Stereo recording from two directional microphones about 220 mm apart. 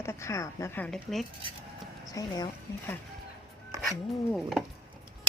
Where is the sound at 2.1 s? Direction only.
15° left (ahead or behind).